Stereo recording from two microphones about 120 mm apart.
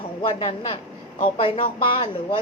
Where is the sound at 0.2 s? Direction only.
45° left (ahead or behind).